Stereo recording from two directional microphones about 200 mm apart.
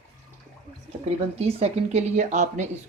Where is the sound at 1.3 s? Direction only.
30° right (ahead or behind).